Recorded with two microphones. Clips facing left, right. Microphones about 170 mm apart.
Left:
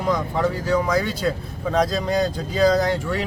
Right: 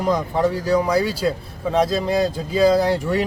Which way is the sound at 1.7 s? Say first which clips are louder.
Right 2 dB; 5° right (ahead or behind).